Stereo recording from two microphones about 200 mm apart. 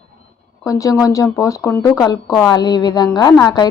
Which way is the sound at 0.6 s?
15° left (ahead or behind).